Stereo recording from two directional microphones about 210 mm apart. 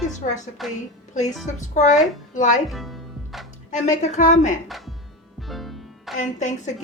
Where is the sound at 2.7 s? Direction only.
Centre (ahead or behind).